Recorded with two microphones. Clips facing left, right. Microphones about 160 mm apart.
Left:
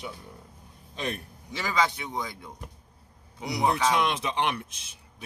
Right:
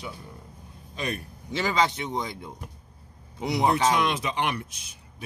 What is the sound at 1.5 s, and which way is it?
Speech, 25° right (ahead or behind).